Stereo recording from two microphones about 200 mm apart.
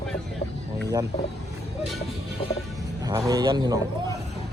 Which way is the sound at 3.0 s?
20° right (ahead or behind).